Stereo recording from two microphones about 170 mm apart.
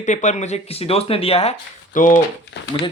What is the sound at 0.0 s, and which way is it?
Speech, 45° left (ahead or behind).